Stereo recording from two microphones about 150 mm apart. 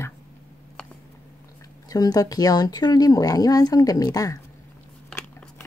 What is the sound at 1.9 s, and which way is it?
Speech, 25° left (ahead or behind).